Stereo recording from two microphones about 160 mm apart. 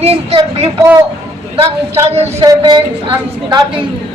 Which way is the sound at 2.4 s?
25° right (ahead or behind).